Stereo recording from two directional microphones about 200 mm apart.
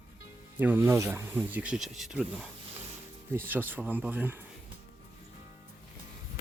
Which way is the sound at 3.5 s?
10° right (ahead or behind).